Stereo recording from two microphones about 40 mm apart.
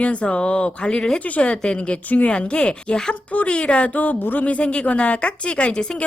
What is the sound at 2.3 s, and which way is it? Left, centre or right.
A woman's voice, left.